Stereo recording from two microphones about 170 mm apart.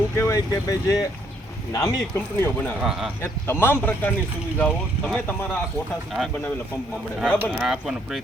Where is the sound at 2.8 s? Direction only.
5° right (ahead or behind).